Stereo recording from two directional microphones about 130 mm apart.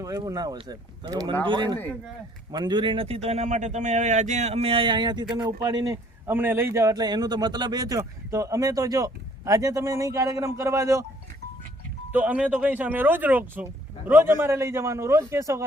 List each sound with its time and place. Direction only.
0.0 s a man's voice: 30° right (ahead or behind)
6.2 s a man's voice: 15° right (ahead or behind)
12.1 s speech: 10° right (ahead or behind)